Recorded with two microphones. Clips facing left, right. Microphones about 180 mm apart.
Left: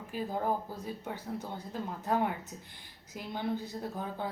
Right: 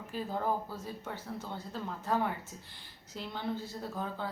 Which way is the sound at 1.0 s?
15° left (ahead or behind).